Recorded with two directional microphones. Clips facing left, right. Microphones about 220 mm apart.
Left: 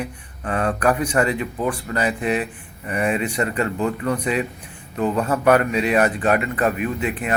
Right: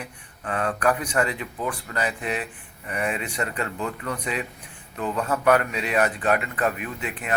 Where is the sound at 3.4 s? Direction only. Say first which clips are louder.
Left 7 dB; 35° left (ahead or behind).